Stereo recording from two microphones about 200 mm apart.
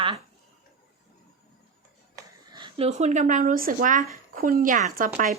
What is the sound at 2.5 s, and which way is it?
Speech, 25° right (ahead or behind).